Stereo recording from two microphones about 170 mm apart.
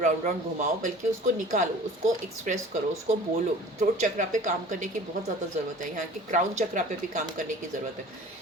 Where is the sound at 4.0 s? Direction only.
50° right (ahead or behind).